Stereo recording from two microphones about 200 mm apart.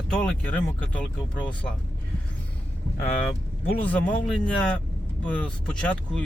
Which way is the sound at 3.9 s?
5° left (ahead or behind).